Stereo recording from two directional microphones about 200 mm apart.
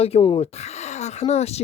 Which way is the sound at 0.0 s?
25° left (ahead or behind).